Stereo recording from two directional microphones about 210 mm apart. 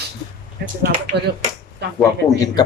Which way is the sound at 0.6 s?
40° right (ahead or behind).